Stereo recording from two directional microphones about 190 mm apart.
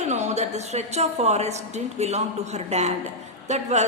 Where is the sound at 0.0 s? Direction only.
35° right (ahead or behind).